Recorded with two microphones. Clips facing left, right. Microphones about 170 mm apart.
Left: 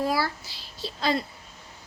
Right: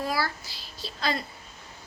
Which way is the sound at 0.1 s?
30° left (ahead or behind).